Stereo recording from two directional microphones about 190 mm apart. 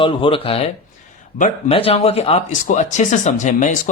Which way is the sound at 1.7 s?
30° left (ahead or behind).